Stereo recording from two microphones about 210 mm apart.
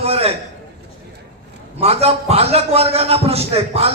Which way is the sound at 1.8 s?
30° right (ahead or behind).